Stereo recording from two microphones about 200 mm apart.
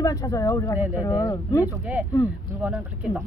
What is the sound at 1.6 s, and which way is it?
Speech, 10° right (ahead or behind).